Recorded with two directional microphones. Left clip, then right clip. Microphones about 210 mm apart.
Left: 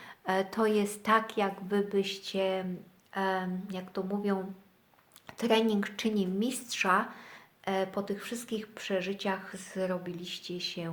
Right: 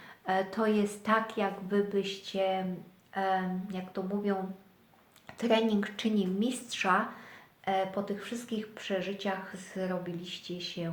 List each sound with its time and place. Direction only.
0.3 s speech: 35° left (ahead or behind)
5.4 s speech: 35° left (ahead or behind)